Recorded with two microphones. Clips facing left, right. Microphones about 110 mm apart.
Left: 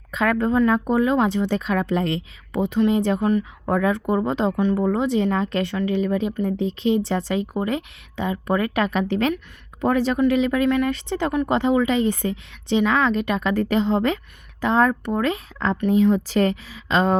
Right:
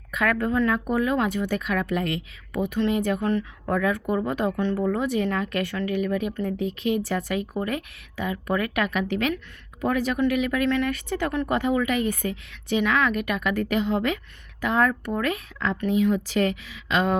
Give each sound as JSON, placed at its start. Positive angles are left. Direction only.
{"t": 0.1, "sound": "speech", "side_deg": 25}